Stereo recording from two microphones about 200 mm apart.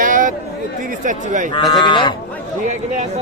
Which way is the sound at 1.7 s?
25° left (ahead or behind).